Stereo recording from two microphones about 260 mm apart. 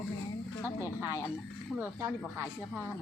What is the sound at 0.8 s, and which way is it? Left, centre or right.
Speech, centre.